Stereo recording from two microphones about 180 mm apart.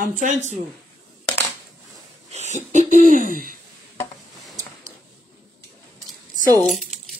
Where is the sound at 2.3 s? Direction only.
40° right (ahead or behind).